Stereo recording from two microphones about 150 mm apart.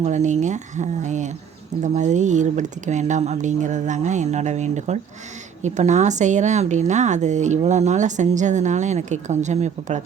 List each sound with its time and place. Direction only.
0.0 s a woman's voice: 50° right (ahead or behind)